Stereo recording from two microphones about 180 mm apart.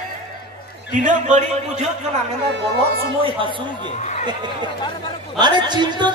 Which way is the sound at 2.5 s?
60° right (ahead or behind).